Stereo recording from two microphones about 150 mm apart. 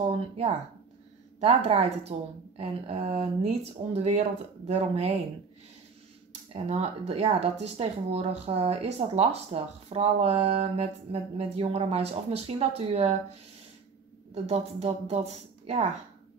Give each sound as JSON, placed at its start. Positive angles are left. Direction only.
{"t": 1.4, "sound": "speech", "side_deg": -45}
{"t": 6.5, "sound": "speech", "side_deg": -45}